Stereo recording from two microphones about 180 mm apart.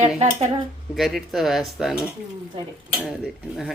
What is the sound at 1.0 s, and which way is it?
Speech, centre (ahead or behind).